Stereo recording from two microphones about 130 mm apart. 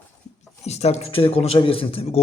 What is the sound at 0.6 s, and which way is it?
A man's voice, 55° left (ahead or behind).